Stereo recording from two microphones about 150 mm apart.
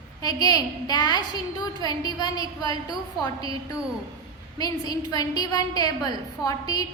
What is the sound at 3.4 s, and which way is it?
A woman's voice, 25° left (ahead or behind).